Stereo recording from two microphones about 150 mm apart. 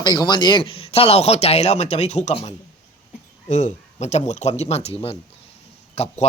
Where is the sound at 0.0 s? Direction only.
30° left (ahead or behind); by 2.6 s 45° left (ahead or behind).